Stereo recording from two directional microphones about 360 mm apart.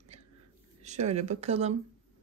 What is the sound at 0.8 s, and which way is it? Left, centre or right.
Speech, centre.